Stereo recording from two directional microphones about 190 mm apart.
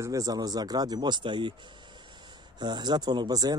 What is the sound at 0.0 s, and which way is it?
Speech, 15° right (ahead or behind).